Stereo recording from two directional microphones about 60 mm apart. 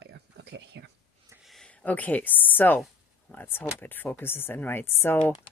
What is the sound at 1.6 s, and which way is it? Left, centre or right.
Speech, left.